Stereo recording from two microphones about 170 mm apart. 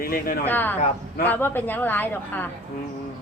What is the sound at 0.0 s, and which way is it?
Speech, 60° left (ahead or behind).